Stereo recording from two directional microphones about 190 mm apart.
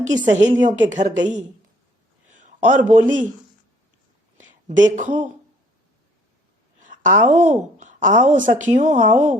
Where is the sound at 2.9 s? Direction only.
40° right (ahead or behind).